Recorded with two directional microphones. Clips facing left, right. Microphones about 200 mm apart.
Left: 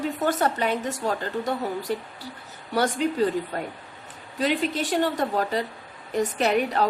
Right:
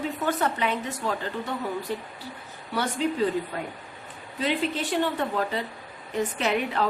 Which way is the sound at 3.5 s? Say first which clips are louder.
Left 2 dB; 40° left (ahead or behind).